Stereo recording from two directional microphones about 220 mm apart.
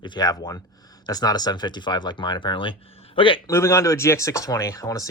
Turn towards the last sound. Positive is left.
turn(degrees=15)  # may be behind; listen again after turning